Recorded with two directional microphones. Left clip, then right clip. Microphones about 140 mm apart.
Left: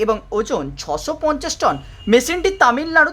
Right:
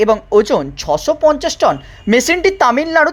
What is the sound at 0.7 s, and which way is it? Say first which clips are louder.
Speech: right 8 dB; 15° right (ahead or behind).